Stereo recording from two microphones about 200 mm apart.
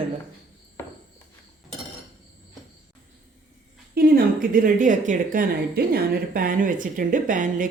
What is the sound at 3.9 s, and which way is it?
Speech, 45° right (ahead or behind).